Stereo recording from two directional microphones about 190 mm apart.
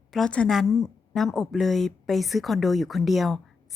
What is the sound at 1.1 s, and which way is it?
Speech, centre (ahead or behind).